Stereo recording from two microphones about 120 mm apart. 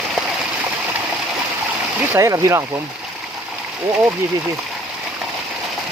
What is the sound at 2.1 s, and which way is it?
Speech, 25° right (ahead or behind).